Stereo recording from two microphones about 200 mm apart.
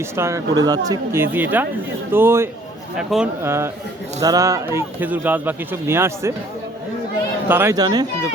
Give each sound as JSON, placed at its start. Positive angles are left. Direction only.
{"t": 0.2, "sound": "speech", "side_deg": -15}
{"t": 7.4, "sound": "speech", "side_deg": -10}